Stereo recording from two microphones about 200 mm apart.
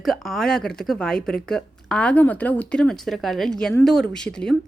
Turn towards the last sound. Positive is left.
turn(degrees=5)  # may be behind; listen again after turning